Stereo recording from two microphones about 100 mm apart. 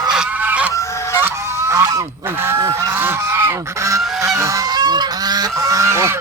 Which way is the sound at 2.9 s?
20° right (ahead or behind).